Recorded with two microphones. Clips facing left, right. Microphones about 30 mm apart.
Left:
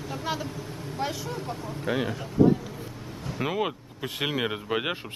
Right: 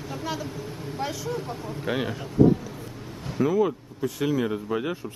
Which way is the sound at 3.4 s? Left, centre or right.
Left.